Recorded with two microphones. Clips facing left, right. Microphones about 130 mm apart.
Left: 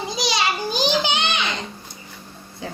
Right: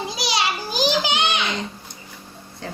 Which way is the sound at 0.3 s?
5° right (ahead or behind).